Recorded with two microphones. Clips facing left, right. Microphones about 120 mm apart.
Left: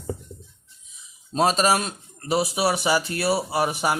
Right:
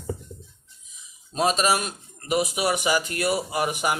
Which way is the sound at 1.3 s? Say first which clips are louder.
Left 2 dB; 35° left (ahead or behind).